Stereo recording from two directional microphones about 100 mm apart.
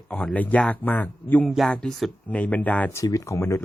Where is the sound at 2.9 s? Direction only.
35° left (ahead or behind).